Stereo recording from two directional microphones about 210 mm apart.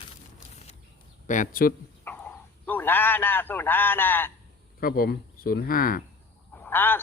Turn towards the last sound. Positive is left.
turn(degrees=10)  # may be behind; listen again after turning